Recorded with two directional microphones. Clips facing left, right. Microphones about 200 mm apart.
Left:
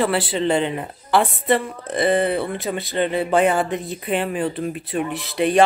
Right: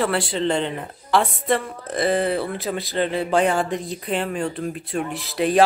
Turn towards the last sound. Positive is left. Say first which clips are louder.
# left 1 dB
turn(degrees=0)  # may be behind; listen again after turning